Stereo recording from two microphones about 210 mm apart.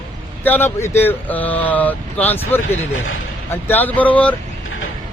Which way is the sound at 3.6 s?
10° left (ahead or behind).